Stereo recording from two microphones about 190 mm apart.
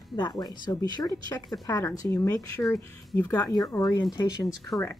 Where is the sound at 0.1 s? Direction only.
20° left (ahead or behind).